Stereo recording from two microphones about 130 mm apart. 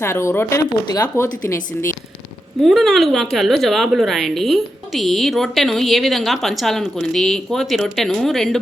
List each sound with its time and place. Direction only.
0.0 s speech: 20° left (ahead or behind)
2.6 s a woman's voice: centre (ahead or behind)